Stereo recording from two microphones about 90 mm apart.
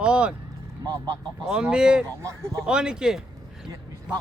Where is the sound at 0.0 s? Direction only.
10° right (ahead or behind).